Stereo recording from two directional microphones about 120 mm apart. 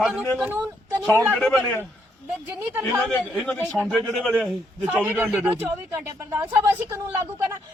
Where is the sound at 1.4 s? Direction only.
15° left (ahead or behind).